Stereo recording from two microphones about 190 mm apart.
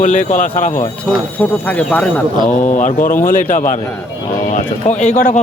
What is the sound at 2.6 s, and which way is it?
Speech, 40° left (ahead or behind).